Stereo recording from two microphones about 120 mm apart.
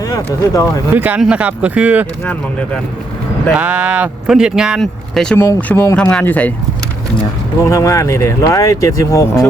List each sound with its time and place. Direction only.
0.0 s speech: 30° left (ahead or behind)
0.9 s speech: 15° right (ahead or behind)
3.5 s speech: 10° right (ahead or behind)
5.4 s speech: 15° left (ahead or behind)
7.6 s speech: 25° left (ahead or behind)